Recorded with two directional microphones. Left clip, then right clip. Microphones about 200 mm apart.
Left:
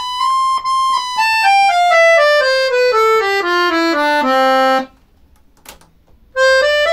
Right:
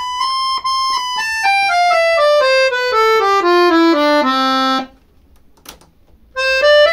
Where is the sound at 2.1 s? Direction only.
10° left (ahead or behind).